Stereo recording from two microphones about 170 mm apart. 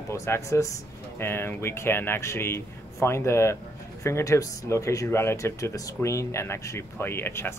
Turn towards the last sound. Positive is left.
turn(degrees=15)  # may be behind; listen again after turning